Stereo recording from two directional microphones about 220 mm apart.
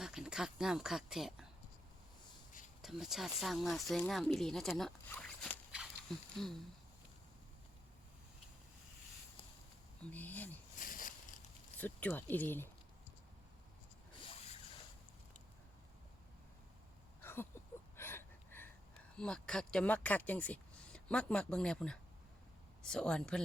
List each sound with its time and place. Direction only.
0.0 s speech: 5° right (ahead or behind)
2.8 s speech: centre (ahead or behind)
10.1 s speech: 5° left (ahead or behind)
10.8 s a sound: 40° left (ahead or behind)
11.8 s speech: 10° left (ahead or behind)
17.2 s a sound: 10° left (ahead or behind)
19.1 s speech: 5° left (ahead or behind)